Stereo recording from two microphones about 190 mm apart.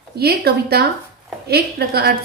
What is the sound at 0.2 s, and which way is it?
A woman's voice, 55° right (ahead or behind).